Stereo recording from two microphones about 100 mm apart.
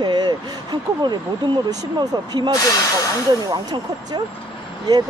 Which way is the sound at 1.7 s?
45° right (ahead or behind).